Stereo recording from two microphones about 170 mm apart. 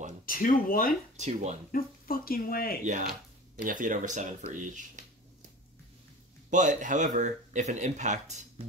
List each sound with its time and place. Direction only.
0.3 s speech: 55° left (ahead or behind)
1.1 s speech: 40° right (ahead or behind)
1.7 s speech: 60° left (ahead or behind)
3.6 s speech: 50° right (ahead or behind)
6.5 s speech: 50° right (ahead or behind)